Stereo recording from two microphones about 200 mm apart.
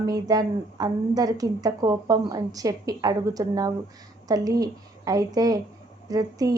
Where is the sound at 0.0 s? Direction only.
20° right (ahead or behind).